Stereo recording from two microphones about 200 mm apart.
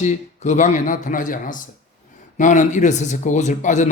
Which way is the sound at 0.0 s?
35° left (ahead or behind).